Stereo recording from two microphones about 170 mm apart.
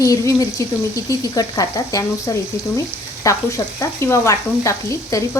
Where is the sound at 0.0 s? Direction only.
20° left (ahead or behind).